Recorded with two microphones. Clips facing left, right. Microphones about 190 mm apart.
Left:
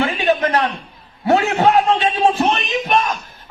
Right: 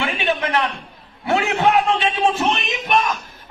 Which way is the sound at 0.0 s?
40° left (ahead or behind).